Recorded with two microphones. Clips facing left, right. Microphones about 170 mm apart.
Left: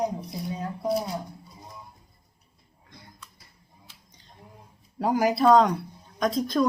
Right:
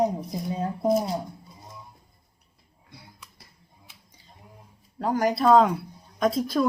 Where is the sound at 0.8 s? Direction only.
45° right (ahead or behind).